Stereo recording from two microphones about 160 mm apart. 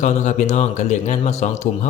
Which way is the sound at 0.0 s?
50° left (ahead or behind).